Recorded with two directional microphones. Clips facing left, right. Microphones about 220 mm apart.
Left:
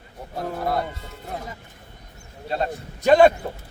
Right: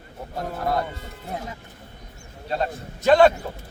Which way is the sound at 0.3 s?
5° left (ahead or behind).